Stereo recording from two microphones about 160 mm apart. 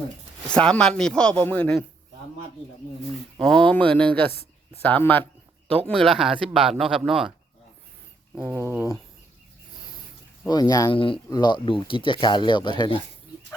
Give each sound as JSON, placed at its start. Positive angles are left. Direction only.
{"t": 0.5, "sound": "speech", "side_deg": 5}
{"t": 3.4, "sound": "speech", "side_deg": 5}
{"t": 8.4, "sound": "speech", "side_deg": -15}
{"t": 10.4, "sound": "speech", "side_deg": 25}